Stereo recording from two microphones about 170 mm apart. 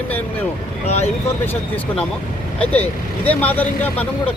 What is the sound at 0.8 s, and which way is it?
Speech, 40° left (ahead or behind).